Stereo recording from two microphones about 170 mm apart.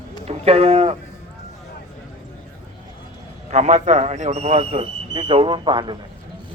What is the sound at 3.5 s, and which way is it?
Speech, 45° right (ahead or behind).